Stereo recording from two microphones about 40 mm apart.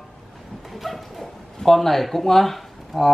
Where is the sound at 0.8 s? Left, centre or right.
Centre.